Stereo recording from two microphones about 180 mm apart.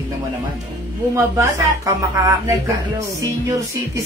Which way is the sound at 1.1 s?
15° right (ahead or behind).